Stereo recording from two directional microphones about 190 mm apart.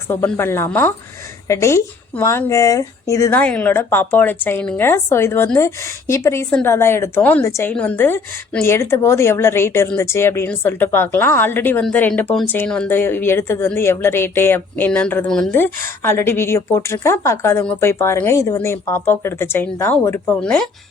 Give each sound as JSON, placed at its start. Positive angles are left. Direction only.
{"t": 0.1, "sound": "speech", "side_deg": 15}